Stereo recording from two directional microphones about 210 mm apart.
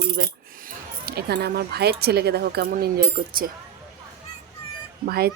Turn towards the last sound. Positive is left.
turn(degrees=-45)  # may be behind; listen again after turning